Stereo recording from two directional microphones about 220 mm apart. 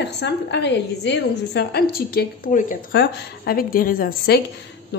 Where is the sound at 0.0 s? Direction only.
50° left (ahead or behind).